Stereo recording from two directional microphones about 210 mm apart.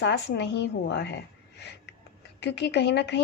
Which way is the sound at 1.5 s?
55° left (ahead or behind).